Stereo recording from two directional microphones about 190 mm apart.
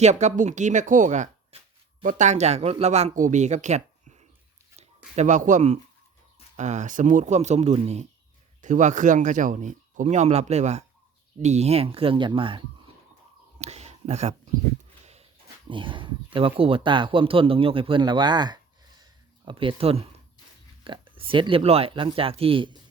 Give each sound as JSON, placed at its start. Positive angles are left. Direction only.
{"t": 0.0, "sound": "speech", "side_deg": -35}
{"t": 13.6, "sound": "a sound", "side_deg": -35}
{"t": 15.7, "sound": "speech", "side_deg": -25}